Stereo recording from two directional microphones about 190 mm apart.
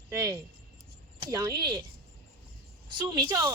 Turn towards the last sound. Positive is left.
turn(degrees=-20)  # may be behind; listen again after turning